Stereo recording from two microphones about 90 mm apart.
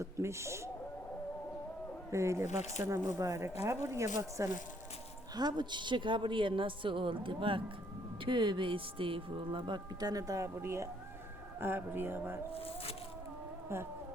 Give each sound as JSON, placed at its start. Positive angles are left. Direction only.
{"t": 0.0, "sound": "speech", "side_deg": -30}
{"t": 2.0, "sound": "speech", "side_deg": -35}
{"t": 5.3, "sound": "a woman's voice", "side_deg": -50}
{"t": 12.5, "sound": "a sound", "side_deg": 90}